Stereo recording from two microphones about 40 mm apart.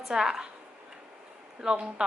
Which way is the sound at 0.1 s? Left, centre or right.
Centre.